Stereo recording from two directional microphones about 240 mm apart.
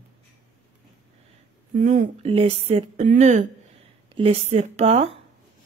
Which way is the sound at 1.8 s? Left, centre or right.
Right.